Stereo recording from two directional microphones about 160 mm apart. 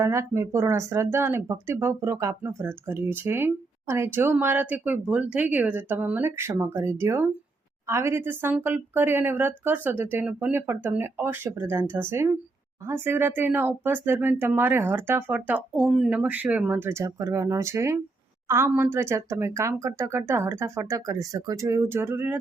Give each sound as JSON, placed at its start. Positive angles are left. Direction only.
{"t": 0.0, "sound": "speech", "side_deg": -20}